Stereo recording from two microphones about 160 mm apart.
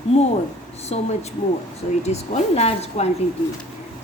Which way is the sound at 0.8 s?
40° left (ahead or behind).